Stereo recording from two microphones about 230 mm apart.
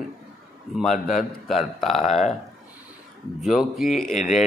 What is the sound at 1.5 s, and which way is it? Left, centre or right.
Speech, centre.